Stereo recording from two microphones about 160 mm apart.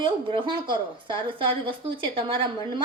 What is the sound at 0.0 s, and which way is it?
A woman's voice, 30° right (ahead or behind).